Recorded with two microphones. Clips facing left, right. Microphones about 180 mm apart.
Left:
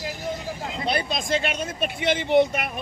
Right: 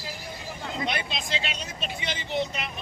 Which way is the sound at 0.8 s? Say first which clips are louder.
Left 6 dB; 35° left (ahead or behind).